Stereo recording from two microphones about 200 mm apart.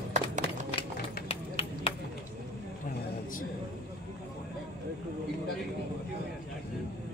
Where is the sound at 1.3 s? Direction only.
30° left (ahead or behind).